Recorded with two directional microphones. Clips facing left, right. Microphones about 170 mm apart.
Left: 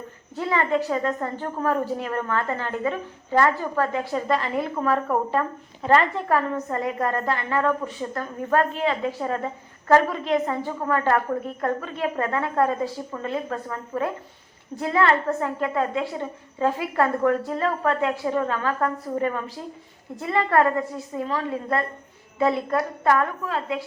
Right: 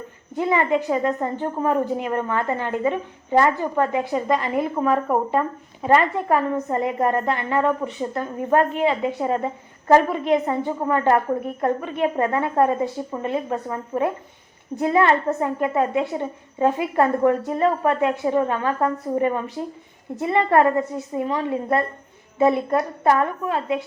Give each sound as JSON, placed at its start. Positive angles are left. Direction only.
{"t": 0.3, "sound": "a woman's voice", "side_deg": -15}